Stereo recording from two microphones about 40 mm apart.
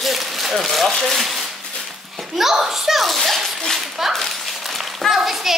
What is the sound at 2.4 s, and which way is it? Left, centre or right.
Speech, centre.